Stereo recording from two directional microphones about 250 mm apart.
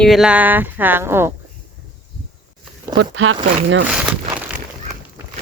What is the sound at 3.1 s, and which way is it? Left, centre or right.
Speech, right.